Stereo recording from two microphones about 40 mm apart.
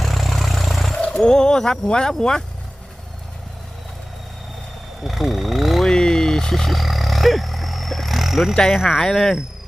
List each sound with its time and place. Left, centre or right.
0.0 s vehicle: centre
1.1 s speech: centre
5.0 s speech: centre
5.8 s speech: centre
6.7 s a sound: centre
8.7 s speech: centre
9.0 s speech: centre